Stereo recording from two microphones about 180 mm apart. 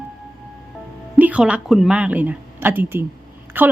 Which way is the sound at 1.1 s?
10° right (ahead or behind).